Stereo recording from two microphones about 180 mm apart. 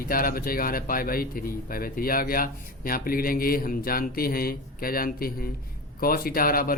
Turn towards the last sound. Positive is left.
turn(degrees=55)  # may be behind; listen again after turning